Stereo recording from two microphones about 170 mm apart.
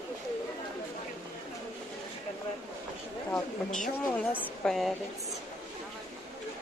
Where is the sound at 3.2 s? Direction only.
10° left (ahead or behind).